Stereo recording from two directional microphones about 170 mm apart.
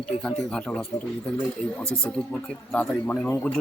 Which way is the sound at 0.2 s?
5° left (ahead or behind).